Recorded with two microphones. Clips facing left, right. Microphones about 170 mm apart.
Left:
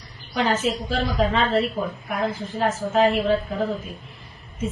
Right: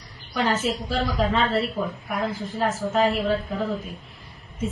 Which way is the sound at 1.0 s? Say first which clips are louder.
Left 2 dB; 20° left (ahead or behind).